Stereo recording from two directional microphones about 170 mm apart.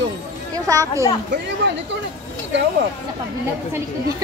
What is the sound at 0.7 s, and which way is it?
Speech, 20° right (ahead or behind).